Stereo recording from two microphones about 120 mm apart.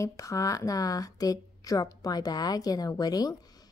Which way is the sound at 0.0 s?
25° left (ahead or behind).